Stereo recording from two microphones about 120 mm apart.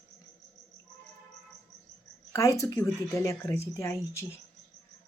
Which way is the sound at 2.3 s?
25° left (ahead or behind).